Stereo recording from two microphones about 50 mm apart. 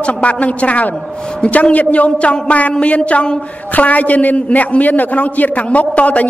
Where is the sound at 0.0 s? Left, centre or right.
Left.